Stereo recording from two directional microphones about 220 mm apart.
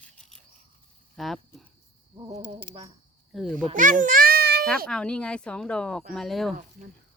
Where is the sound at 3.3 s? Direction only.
Centre (ahead or behind).